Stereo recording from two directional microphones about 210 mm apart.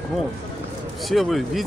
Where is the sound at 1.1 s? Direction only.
Centre (ahead or behind).